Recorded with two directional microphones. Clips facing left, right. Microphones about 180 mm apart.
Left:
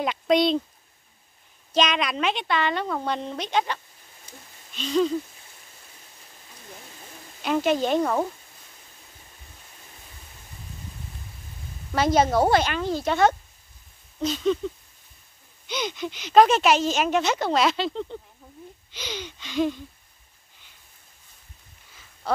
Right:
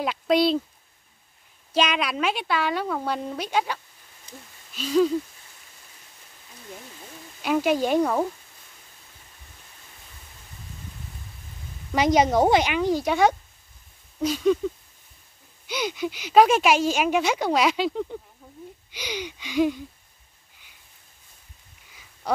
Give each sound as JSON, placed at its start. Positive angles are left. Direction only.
{"t": 0.0, "sound": "speech", "side_deg": -5}
{"t": 1.7, "sound": "speech", "side_deg": -10}
{"t": 7.4, "sound": "speech", "side_deg": -10}
{"t": 11.9, "sound": "speech", "side_deg": -15}
{"t": 15.6, "sound": "speech", "side_deg": -10}
{"t": 22.2, "sound": "speech", "side_deg": -15}